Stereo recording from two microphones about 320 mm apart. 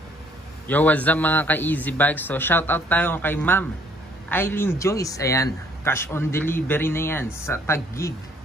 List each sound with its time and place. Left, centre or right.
0.7 s a man's voice: centre